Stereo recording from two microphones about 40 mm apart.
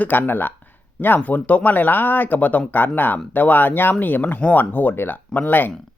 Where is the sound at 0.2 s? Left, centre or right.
Left.